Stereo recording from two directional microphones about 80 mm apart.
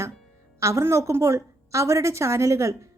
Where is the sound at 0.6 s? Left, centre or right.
Right.